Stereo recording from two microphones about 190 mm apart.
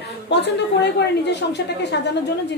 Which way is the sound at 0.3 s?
65° left (ahead or behind).